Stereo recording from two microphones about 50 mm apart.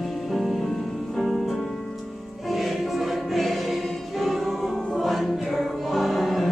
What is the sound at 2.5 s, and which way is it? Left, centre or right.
Choir, centre.